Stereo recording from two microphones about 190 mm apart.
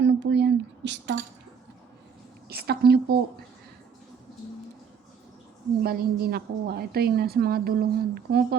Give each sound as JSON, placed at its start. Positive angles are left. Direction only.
{"t": 0.0, "sound": "speech", "side_deg": -65}
{"t": 2.5, "sound": "a woman's voice", "side_deg": -55}
{"t": 5.8, "sound": "a woman's voice", "side_deg": -55}